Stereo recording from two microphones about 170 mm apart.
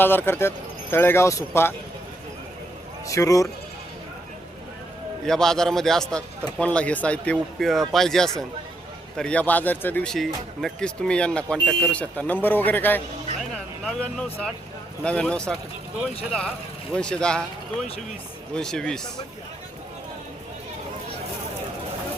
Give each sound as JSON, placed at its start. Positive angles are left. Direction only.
{"t": 0.0, "sound": "speech", "side_deg": 10}
{"t": 3.1, "sound": "speech", "side_deg": 20}
{"t": 5.2, "sound": "speech", "side_deg": 5}